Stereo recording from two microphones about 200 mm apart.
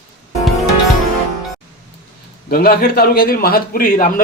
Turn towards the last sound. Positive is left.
turn(degrees=45)  # may be behind; listen again after turning